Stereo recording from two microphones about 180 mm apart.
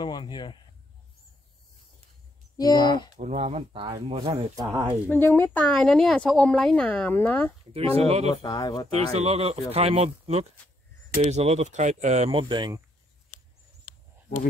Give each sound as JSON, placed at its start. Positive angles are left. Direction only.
{"t": 0.0, "sound": "speech", "side_deg": 25}
{"t": 2.5, "sound": "speech", "side_deg": 20}
{"t": 3.2, "sound": "speech", "side_deg": -40}
{"t": 5.2, "sound": "speech", "side_deg": 10}
{"t": 7.7, "sound": "speech", "side_deg": -35}
{"t": 8.4, "sound": "speech", "side_deg": 20}
{"t": 8.9, "sound": "speech", "side_deg": -35}
{"t": 12.3, "sound": "speech", "side_deg": -25}